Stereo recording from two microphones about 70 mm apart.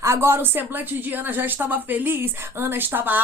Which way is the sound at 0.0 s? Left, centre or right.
Right.